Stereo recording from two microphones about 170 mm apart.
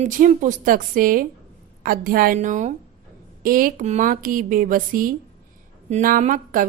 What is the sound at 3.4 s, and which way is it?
A woman's voice, 55° right (ahead or behind).